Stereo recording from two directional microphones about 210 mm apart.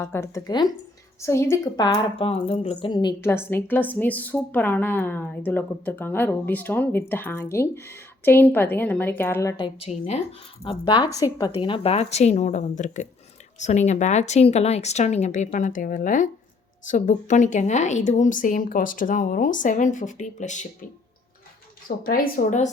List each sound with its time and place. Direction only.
0.0 s speech: 10° left (ahead or behind); by 22.7 s 35° left (ahead or behind)